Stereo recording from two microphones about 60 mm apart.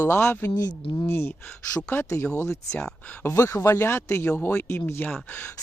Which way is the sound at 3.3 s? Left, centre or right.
Left.